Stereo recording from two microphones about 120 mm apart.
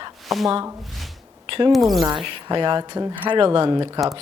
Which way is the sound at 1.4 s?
50° right (ahead or behind).